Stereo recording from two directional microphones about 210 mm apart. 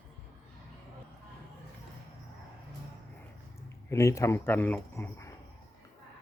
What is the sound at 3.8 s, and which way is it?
Speech, 15° left (ahead or behind).